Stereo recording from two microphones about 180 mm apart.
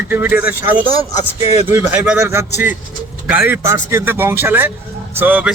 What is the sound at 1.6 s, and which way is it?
A man's voice, 10° right (ahead or behind).